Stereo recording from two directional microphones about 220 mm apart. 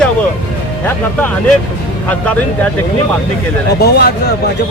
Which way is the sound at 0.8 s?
10° left (ahead or behind).